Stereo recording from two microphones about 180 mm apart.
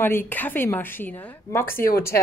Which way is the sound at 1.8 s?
55° left (ahead or behind).